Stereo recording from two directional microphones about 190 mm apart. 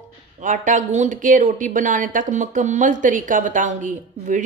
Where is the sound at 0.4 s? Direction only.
40° right (ahead or behind).